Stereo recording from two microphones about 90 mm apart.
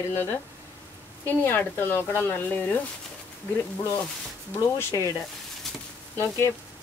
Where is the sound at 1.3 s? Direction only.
20° left (ahead or behind).